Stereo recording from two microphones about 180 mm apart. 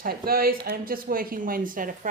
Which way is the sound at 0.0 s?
55° right (ahead or behind).